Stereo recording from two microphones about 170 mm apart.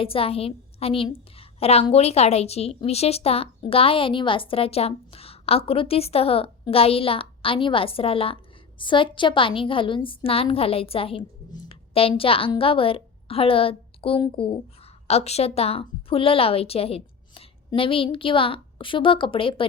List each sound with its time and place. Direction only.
0.0 s a woman's voice: 35° left (ahead or behind)